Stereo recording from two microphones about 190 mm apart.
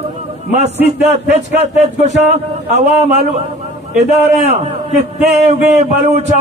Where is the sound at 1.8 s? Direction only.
35° right (ahead or behind).